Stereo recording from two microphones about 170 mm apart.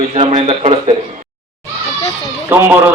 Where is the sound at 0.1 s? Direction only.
35° right (ahead or behind).